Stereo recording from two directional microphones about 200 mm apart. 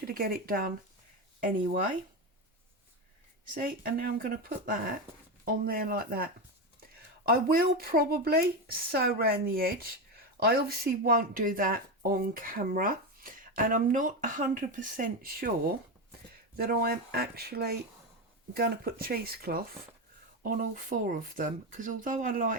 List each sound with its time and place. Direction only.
0.0 s speech: 50° right (ahead or behind)
3.5 s speech: 45° right (ahead or behind)
7.3 s speech: 45° right (ahead or behind)